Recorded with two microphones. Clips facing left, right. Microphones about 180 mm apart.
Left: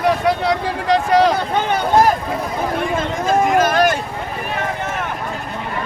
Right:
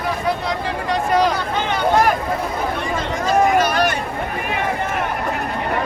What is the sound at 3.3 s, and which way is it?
Vehicle, 50° left (ahead or behind).